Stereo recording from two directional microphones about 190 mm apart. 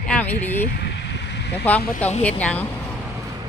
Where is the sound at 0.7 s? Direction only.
60° left (ahead or behind).